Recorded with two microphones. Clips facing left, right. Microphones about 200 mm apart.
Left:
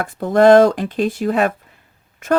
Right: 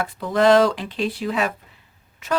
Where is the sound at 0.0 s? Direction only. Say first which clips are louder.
Left 6 dB; 50° left (ahead or behind).